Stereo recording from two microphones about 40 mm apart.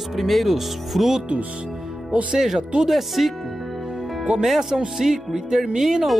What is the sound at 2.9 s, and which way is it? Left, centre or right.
Speech, centre.